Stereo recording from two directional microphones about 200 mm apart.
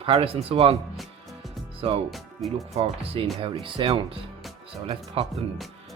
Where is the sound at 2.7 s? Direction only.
30° right (ahead or behind).